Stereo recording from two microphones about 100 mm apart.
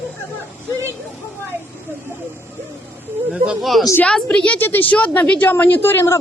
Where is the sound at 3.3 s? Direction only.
10° right (ahead or behind).